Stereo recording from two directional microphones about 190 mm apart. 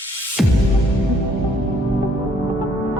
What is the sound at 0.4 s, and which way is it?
Music, centre (ahead or behind).